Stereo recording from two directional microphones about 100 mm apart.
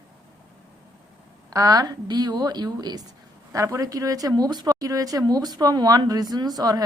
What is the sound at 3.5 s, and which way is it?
A woman's voice, 35° right (ahead or behind).